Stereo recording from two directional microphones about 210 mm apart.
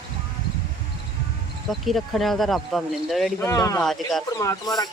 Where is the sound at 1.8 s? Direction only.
Centre (ahead or behind).